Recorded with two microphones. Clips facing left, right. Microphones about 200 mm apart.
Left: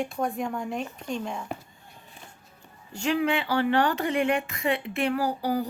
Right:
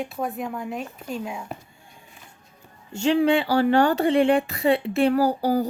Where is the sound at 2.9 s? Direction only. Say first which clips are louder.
Right 6 dB; 25° right (ahead or behind).